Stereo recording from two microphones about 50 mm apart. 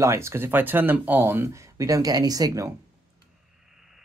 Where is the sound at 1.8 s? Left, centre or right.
Right.